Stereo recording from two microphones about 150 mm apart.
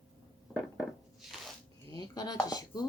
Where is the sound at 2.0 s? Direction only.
25° left (ahead or behind).